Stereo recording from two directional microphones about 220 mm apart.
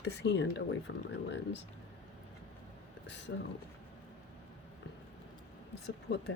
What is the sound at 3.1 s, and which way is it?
Speech, 55° left (ahead or behind).